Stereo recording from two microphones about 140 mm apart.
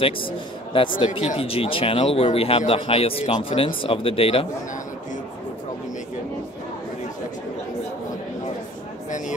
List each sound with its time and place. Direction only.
0.7 s a man's voice: 35° left (ahead or behind)